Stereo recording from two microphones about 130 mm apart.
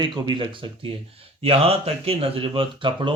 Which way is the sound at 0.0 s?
40° right (ahead or behind).